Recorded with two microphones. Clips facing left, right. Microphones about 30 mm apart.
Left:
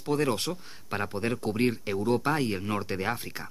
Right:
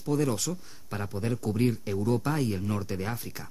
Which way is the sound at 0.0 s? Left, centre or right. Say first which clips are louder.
Left 1 dB; left.